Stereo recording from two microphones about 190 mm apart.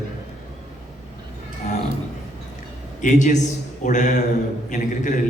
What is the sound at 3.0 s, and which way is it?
A man's voice, 40° left (ahead or behind).